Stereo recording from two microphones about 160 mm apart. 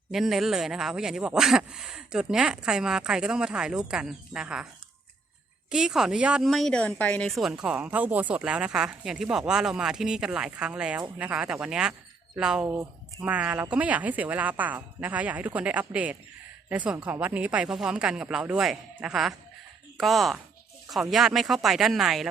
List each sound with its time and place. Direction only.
0.1 s a woman's voice: centre (ahead or behind)
5.7 s a woman's voice: 5° right (ahead or behind)
12.6 s speech: 20° right (ahead or behind)
13.2 s a woman's voice: 10° right (ahead or behind)